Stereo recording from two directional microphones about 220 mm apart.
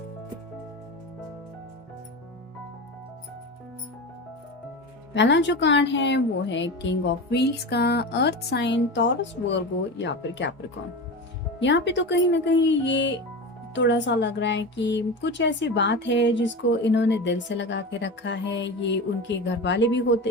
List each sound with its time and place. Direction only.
5.1 s speech: 55° left (ahead or behind)
11.6 s speech: 55° left (ahead or behind)